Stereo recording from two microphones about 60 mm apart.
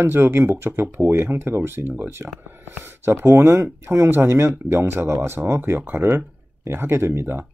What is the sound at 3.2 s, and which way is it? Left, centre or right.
Speech, right.